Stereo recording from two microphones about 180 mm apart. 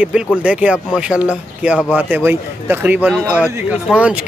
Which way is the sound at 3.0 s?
5° left (ahead or behind).